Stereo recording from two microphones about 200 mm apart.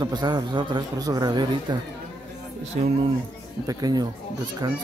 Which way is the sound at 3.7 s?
20° right (ahead or behind).